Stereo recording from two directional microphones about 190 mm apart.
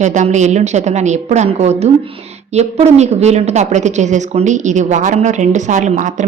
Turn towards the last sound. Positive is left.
turn(degrees=-40)  # may be behind; listen again after turning